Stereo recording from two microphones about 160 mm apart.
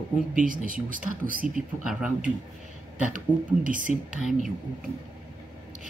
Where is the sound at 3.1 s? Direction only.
55° right (ahead or behind).